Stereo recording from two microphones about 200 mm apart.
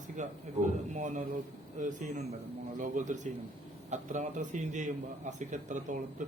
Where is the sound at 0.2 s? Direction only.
40° right (ahead or behind).